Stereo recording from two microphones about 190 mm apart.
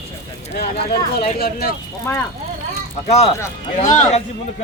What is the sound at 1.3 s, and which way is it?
Speech, 50° left (ahead or behind).